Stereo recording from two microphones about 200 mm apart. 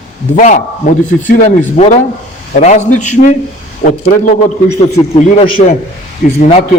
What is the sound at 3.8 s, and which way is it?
Speech, 50° left (ahead or behind).